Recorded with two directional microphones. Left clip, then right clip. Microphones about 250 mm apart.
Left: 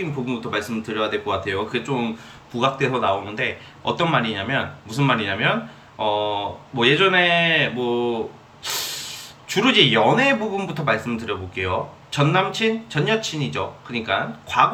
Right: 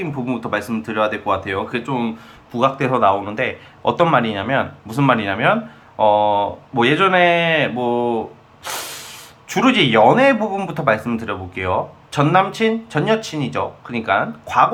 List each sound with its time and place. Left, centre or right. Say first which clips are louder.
0.3 s speech: right 6 dB; centre